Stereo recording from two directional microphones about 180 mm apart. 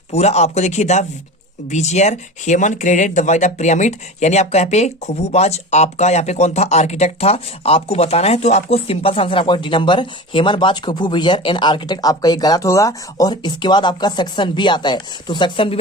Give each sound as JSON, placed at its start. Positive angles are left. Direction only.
{"t": 0.1, "sound": "speech", "side_deg": 35}